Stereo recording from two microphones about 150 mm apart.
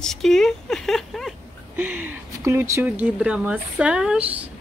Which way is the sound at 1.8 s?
10° right (ahead or behind).